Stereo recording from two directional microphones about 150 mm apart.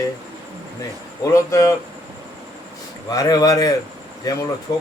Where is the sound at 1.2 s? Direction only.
20° left (ahead or behind).